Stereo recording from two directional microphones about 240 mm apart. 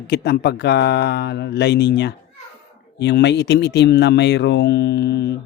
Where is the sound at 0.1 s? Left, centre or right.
Left.